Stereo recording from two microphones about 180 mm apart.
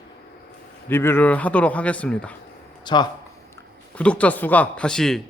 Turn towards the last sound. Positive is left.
turn(degrees=5)  # may be behind; listen again after turning